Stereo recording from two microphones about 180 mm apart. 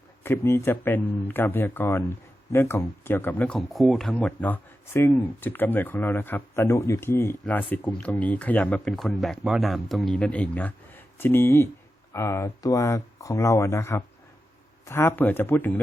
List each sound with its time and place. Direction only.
0.2 s speech: 15° left (ahead or behind)